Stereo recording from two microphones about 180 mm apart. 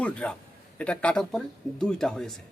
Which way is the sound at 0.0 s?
5° left (ahead or behind).